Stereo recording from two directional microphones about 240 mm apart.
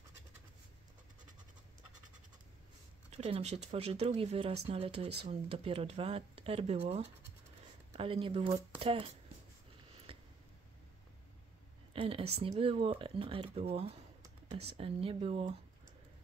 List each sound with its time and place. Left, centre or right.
3.1 s speech: right
10.1 s a sound: right
11.9 s a woman's voice: right